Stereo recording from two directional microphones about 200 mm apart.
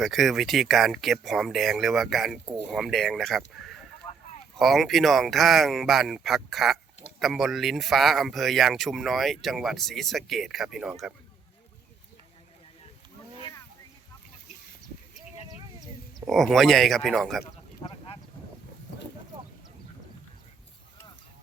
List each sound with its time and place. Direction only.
0.0 s speech: centre (ahead or behind)
13.4 s a sound: 15° left (ahead or behind)
16.2 s speech: centre (ahead or behind)